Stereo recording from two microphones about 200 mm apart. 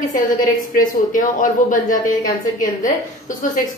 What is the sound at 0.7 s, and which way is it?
A woman's voice, 45° left (ahead or behind).